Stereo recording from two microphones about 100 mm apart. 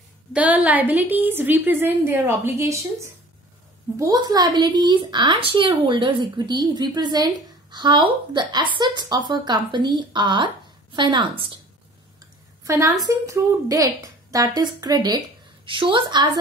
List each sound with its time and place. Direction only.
0.3 s a woman's voice: 15° right (ahead or behind); by 11.2 s 50° right (ahead or behind)
12.6 s a woman's voice: 35° right (ahead or behind)
15.6 s a woman's voice: 55° right (ahead or behind)